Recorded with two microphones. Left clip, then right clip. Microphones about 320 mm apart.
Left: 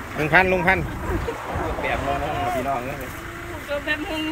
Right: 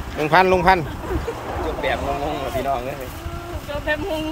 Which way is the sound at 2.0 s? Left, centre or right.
Right.